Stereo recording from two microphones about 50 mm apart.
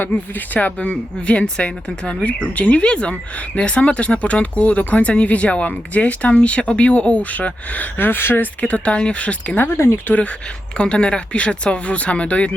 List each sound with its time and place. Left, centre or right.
0.0 s speech: left
7.9 s speech: left
8.6 s speech: left
9.6 s speech: left
10.8 s speech: centre